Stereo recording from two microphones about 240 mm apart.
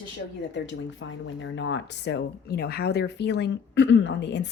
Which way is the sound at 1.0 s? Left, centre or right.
Left.